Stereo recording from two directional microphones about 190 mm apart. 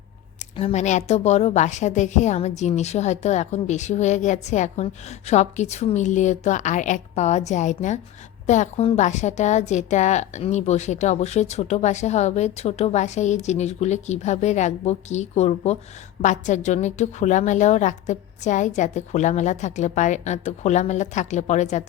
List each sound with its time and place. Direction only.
0.5 s a woman's voice: 35° left (ahead or behind)